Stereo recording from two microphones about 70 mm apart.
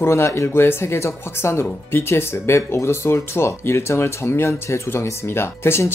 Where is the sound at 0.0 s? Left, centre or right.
Left.